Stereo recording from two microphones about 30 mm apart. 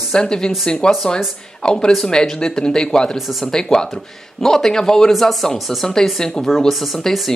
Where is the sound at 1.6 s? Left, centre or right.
Left.